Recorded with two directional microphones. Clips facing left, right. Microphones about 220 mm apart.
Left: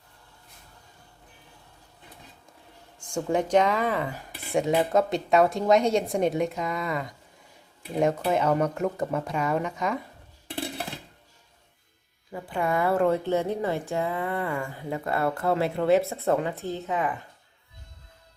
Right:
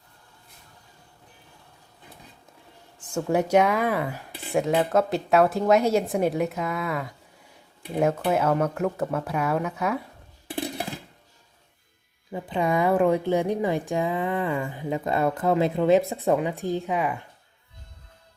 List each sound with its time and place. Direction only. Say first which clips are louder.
3.0 s a woman's voice: right 2 dB; 5° right (ahead or behind)
12.3 s a woman's voice: right 3 dB; 20° right (ahead or behind)